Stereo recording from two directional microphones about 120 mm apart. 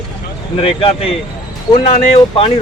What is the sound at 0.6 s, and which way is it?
Speech, 50° left (ahead or behind).